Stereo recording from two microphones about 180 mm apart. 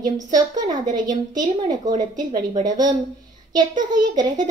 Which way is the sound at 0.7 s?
25° right (ahead or behind).